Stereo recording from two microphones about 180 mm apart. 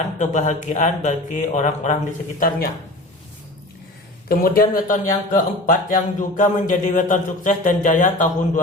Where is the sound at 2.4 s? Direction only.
55° left (ahead or behind).